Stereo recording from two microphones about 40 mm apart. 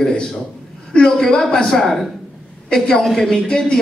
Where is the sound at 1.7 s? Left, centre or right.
Centre.